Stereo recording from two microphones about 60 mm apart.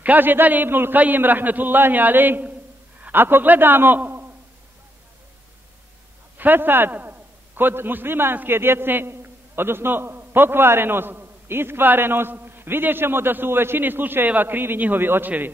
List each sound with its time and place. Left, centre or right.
0.0 s a man's voice: right
6.3 s a man's voice: right